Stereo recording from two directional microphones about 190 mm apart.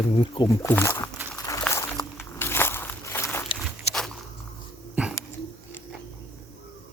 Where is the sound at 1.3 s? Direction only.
15° left (ahead or behind).